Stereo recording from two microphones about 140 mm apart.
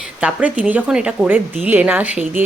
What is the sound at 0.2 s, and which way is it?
Speech, 10° right (ahead or behind).